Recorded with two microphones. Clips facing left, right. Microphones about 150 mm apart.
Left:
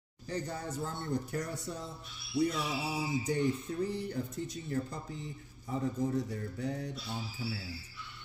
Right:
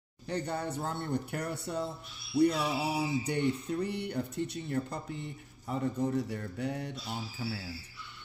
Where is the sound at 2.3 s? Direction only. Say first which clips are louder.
Right 5 dB; 65° right (ahead or behind).